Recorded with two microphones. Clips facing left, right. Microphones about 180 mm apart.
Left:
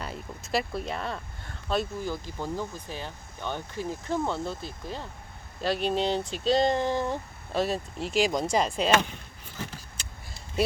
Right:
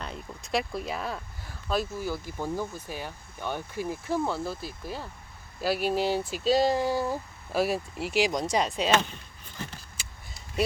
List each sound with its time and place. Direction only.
0.0 s speech: 5° left (ahead or behind)